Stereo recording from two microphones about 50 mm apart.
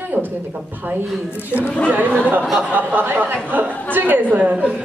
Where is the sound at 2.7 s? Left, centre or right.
Right.